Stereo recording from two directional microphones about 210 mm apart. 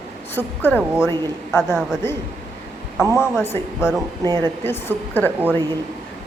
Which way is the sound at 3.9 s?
20° right (ahead or behind).